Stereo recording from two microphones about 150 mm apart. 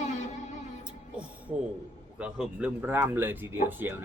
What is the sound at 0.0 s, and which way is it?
Music, 55° left (ahead or behind).